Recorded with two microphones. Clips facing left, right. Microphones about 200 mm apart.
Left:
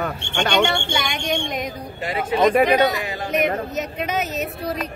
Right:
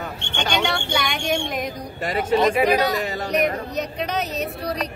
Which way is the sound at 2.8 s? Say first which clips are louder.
Left 2 dB; centre (ahead or behind).